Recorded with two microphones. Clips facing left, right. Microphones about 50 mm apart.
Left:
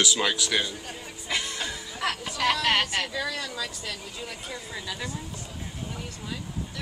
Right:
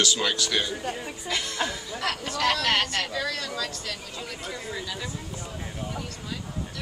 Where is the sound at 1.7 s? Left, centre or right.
Centre.